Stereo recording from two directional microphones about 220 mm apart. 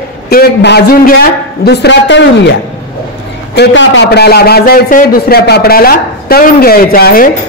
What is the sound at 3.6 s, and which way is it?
A man's voice, 55° left (ahead or behind).